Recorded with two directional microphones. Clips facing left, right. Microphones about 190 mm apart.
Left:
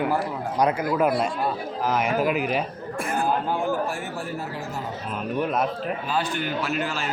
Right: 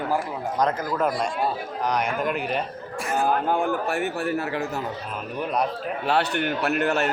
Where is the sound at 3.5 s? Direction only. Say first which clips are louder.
Right 2 dB; 60° right (ahead or behind).